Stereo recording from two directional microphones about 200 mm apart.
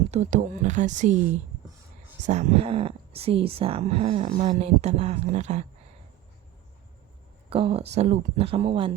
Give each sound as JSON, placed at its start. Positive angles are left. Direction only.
{"t": 0.1, "sound": "speech", "side_deg": -35}
{"t": 2.2, "sound": "speech", "side_deg": -35}
{"t": 7.5, "sound": "speech", "side_deg": -30}